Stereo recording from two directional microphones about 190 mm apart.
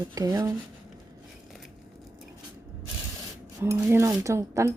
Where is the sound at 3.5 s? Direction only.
15° right (ahead or behind).